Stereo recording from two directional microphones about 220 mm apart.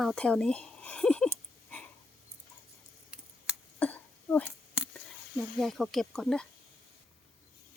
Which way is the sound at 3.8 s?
5° left (ahead or behind).